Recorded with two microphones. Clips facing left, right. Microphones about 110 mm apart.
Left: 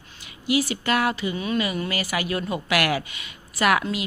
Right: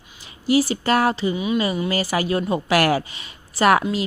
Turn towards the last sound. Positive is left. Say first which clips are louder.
# right 5 dB
turn(degrees=-35)  # may be behind; listen again after turning